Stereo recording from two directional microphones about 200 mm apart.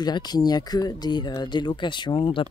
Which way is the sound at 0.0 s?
20° left (ahead or behind).